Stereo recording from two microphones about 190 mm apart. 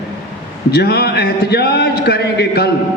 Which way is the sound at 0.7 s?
60° left (ahead or behind).